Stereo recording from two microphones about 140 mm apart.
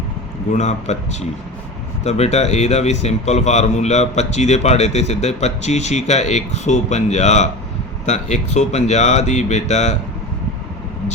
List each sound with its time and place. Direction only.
0.5 s speech: 55° left (ahead or behind)
2.0 s a man's voice: 50° left (ahead or behind)